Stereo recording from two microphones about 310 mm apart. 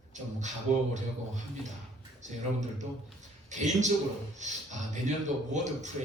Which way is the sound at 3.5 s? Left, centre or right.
Right.